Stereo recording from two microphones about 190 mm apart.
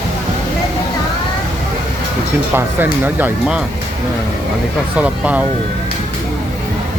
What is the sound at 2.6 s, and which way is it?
Speech, 10° right (ahead or behind).